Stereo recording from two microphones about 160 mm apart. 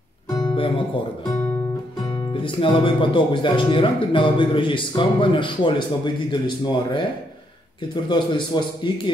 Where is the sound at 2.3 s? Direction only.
30° left (ahead or behind).